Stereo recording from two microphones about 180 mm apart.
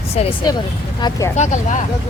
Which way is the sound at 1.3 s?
40° left (ahead or behind).